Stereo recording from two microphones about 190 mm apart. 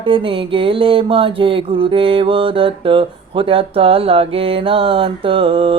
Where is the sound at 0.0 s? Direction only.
25° right (ahead or behind).